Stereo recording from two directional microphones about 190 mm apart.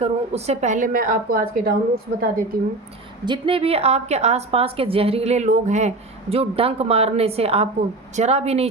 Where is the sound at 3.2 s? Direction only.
25° right (ahead or behind).